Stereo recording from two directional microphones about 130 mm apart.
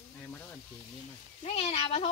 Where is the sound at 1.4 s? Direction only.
55° left (ahead or behind).